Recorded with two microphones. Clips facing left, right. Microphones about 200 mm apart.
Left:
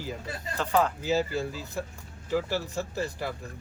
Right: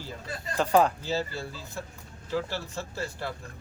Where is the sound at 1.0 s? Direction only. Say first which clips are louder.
Left 4 dB; 15° left (ahead or behind).